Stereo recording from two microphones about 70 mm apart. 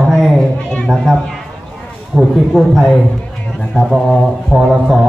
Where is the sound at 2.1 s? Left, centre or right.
Centre.